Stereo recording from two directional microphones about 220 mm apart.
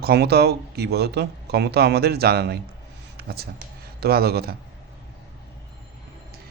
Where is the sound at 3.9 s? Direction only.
45° right (ahead or behind).